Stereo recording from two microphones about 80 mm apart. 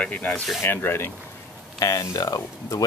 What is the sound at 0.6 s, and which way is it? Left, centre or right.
Speech, left.